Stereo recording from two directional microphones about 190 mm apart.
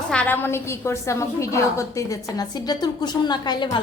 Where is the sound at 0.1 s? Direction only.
10° left (ahead or behind).